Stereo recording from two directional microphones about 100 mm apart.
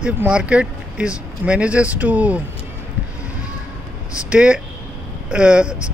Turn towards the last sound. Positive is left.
turn(degrees=-10)  # may be behind; listen again after turning